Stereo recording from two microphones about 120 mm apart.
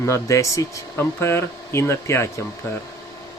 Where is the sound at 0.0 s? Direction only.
25° left (ahead or behind).